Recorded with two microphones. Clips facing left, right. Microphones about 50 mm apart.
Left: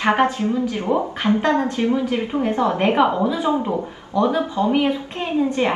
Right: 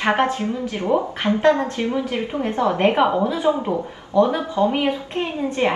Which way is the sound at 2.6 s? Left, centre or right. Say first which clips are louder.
Right 1 dB; right.